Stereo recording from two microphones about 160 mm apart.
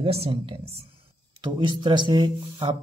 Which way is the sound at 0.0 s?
40° right (ahead or behind).